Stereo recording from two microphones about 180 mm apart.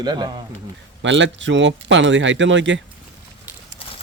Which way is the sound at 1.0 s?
90° right.